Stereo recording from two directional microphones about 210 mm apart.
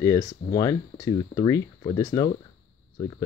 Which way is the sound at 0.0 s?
15° left (ahead or behind).